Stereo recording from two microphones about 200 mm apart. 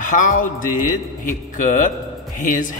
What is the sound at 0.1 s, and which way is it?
Speech, 40° left (ahead or behind).